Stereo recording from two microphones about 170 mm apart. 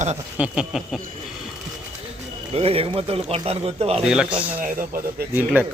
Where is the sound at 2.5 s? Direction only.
35° right (ahead or behind).